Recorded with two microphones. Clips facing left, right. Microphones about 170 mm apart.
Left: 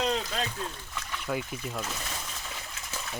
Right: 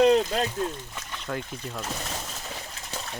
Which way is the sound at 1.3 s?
5° left (ahead or behind).